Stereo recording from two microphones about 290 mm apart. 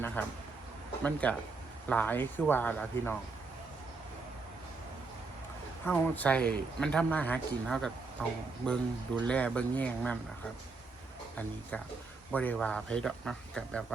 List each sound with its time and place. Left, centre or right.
0.2 s speech: centre
5.8 s speech: centre
12.3 s speech: centre